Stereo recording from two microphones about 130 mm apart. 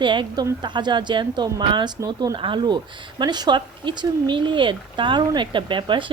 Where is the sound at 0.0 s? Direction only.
40° right (ahead or behind).